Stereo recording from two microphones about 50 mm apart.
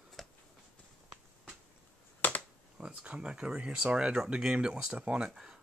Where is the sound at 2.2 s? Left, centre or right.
Left.